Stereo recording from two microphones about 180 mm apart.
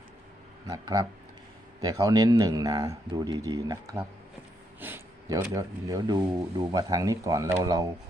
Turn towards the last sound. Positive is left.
turn(degrees=-20)  # may be behind; listen again after turning